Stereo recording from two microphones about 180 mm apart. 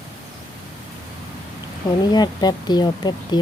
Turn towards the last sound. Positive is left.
turn(degrees=25)  # may be behind; listen again after turning